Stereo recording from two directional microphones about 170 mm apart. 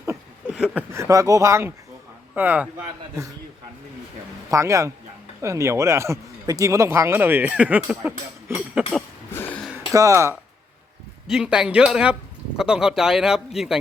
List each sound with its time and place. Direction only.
0.4 s speech: 5° right (ahead or behind)
4.5 s speech: 20° right (ahead or behind)
9.3 s a sound: 10° left (ahead or behind)
9.9 s speech: 20° right (ahead or behind)
11.3 s speech: 5° right (ahead or behind)